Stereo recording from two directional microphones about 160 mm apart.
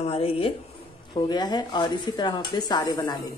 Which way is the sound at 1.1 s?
25° left (ahead or behind).